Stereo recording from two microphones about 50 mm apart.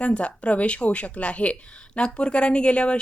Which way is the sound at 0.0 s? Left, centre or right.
Left.